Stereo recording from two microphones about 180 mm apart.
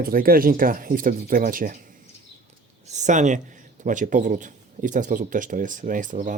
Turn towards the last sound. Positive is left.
turn(degrees=-45)  # may be behind; listen again after turning